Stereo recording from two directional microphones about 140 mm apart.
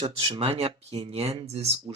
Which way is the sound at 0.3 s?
45° right (ahead or behind).